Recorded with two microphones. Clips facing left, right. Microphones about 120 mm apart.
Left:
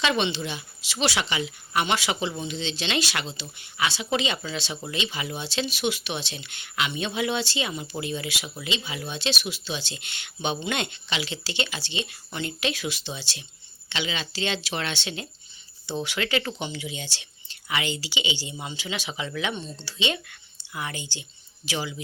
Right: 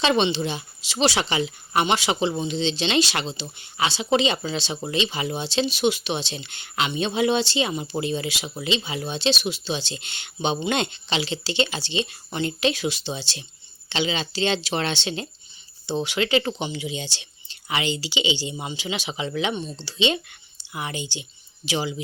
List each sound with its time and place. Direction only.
0.0 s a woman's voice: 30° right (ahead or behind)